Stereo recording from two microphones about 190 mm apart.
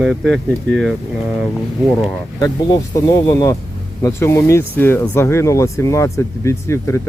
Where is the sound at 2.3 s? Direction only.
20° left (ahead or behind).